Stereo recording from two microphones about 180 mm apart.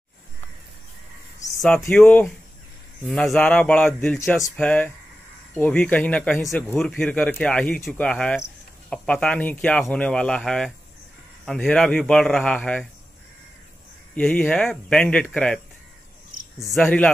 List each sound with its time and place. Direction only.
1.4 s a sound: 20° left (ahead or behind)
1.9 s speech: 5° left (ahead or behind)
14.1 s speech: 10° left (ahead or behind)
16.7 s speech: 5° left (ahead or behind)